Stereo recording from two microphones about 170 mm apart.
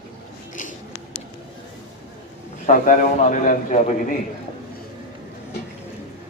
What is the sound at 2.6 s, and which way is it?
A man's voice, 50° left (ahead or behind).